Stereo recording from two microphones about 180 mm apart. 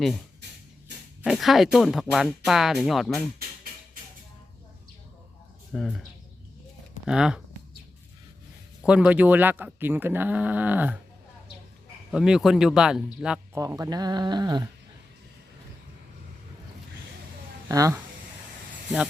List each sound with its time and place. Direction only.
1.2 s speech: centre (ahead or behind)
5.7 s speech: centre (ahead or behind)
7.1 s speech: 5° right (ahead or behind)
8.8 s speech: 5° right (ahead or behind)
12.1 s speech: 5° right (ahead or behind)
13.6 s speech: 15° right (ahead or behind)
17.7 s speech: 20° right (ahead or behind)